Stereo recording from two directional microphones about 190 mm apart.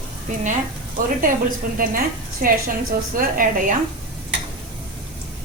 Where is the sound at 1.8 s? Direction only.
50° right (ahead or behind).